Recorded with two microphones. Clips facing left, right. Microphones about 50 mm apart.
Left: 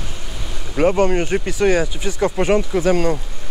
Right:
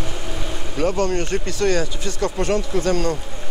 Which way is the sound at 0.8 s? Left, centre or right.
Left.